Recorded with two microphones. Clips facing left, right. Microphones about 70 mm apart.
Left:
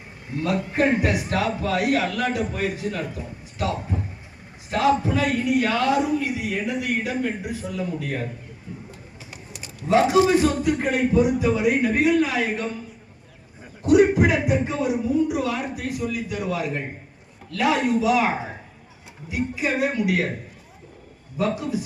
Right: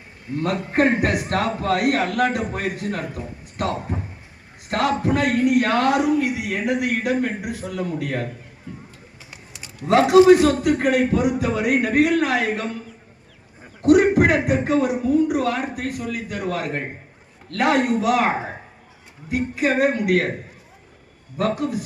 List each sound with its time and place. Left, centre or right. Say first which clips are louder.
0.3 s a man's voice: right 2 dB; right
9.8 s speech: right 5 dB; right
13.8 s a man's voice: right 2 dB; right
21.3 s a man's voice: right 2 dB; right